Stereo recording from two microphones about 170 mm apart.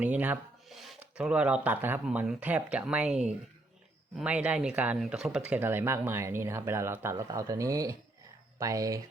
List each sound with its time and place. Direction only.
0.0 s speech: 10° right (ahead or behind)